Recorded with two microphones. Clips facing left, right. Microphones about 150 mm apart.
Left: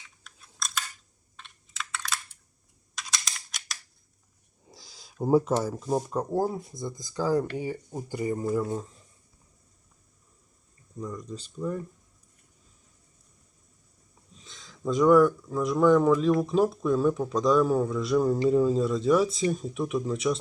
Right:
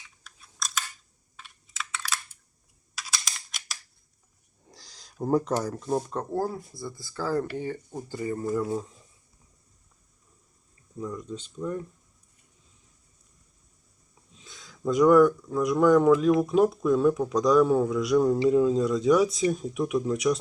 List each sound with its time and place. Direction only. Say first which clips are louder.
0.3 s scissors: right 1 dB; centre (ahead or behind)
1.4 s computer keyboard: right 1 dB; centre (ahead or behind)
4.6 s a sound: left 1 dB; 5° left (ahead or behind)
5.6 s speech: even; 5° left (ahead or behind)
8.6 s speech: right 2 dB; 5° right (ahead or behind)
10.9 s speech: right 2 dB; 5° right (ahead or behind)
14.3 s speech: right 1 dB; centre (ahead or behind)